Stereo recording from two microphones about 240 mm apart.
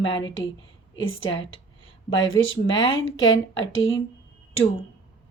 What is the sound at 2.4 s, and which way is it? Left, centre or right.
Speech, centre.